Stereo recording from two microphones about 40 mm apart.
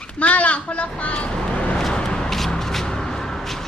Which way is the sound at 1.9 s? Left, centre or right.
Left.